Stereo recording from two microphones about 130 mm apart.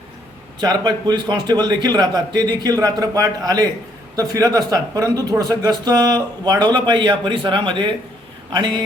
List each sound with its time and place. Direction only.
0.6 s speech: 30° right (ahead or behind)